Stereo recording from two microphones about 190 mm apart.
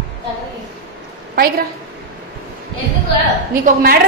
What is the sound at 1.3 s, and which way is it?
Speech, 50° right (ahead or behind).